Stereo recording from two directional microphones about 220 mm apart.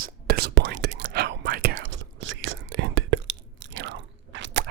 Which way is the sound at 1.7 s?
55° right (ahead or behind).